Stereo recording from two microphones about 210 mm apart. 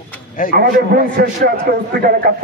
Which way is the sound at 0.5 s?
45° right (ahead or behind).